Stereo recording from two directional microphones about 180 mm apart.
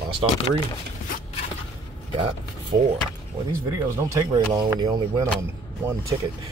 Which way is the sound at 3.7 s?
20° right (ahead or behind).